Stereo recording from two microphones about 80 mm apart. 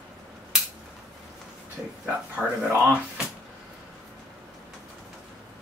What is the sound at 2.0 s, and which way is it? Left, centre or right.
Speech, centre.